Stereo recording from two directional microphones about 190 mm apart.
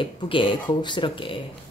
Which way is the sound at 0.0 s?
25° left (ahead or behind).